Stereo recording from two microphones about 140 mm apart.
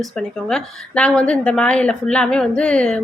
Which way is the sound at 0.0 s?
5° left (ahead or behind).